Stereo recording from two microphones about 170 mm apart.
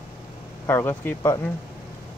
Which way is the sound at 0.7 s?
10° left (ahead or behind).